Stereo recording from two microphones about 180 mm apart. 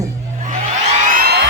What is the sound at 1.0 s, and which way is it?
Music, 50° right (ahead or behind).